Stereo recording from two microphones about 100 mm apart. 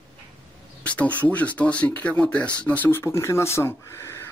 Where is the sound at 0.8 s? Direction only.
15° left (ahead or behind).